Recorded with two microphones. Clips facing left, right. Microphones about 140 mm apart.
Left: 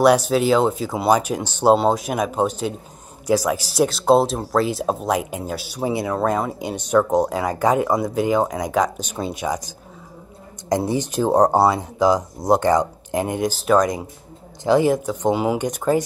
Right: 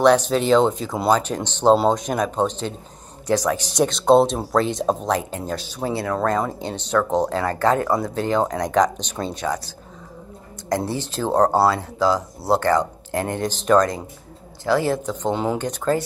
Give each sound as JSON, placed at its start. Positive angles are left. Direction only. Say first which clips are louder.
{"t": 0.0, "sound": "speech", "louder": "left 1 dB", "side_deg": 10}
{"t": 10.9, "sound": "speech", "louder": "left 4 dB", "side_deg": 15}